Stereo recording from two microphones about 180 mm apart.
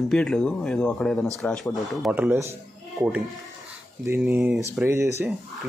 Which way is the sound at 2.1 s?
10° right (ahead or behind).